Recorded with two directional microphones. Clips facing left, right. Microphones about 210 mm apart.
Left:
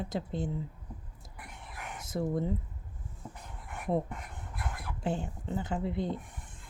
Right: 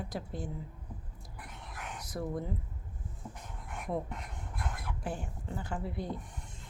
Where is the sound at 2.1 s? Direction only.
25° left (ahead or behind).